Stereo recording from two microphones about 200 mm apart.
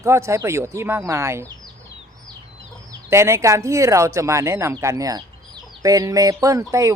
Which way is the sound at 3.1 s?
15° right (ahead or behind).